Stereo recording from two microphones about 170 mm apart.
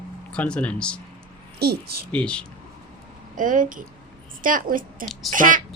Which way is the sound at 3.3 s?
50° right (ahead or behind).